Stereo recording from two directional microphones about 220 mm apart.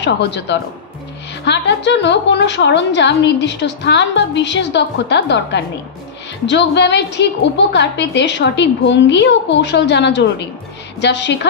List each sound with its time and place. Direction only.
0.0 s a woman's voice: 50° left (ahead or behind)